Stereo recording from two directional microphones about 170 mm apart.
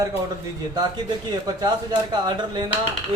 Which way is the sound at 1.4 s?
25° right (ahead or behind).